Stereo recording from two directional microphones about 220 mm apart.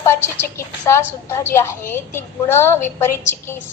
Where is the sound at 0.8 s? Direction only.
15° left (ahead or behind).